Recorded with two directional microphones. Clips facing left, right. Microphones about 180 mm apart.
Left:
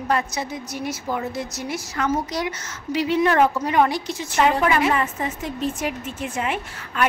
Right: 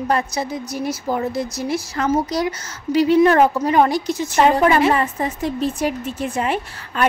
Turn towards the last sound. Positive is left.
turn(degrees=-35)  # may be behind; listen again after turning